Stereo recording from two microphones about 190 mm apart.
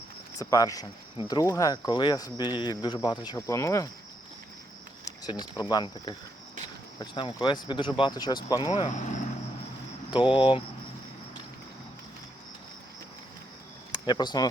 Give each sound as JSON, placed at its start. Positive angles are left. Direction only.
{"t": 0.3, "sound": "speech", "side_deg": 20}
{"t": 5.0, "sound": "speech", "side_deg": 20}
{"t": 8.7, "sound": "speech", "side_deg": 35}
{"t": 10.2, "sound": "speech", "side_deg": 25}
{"t": 14.1, "sound": "speech", "side_deg": 20}